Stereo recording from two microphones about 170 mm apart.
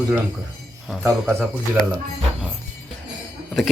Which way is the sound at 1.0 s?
15° right (ahead or behind).